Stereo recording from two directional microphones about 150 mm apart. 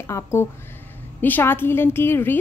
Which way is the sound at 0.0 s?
20° left (ahead or behind).